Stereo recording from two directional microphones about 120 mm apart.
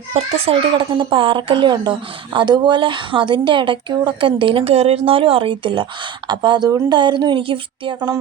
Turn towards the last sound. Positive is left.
turn(degrees=-45)  # may be behind; listen again after turning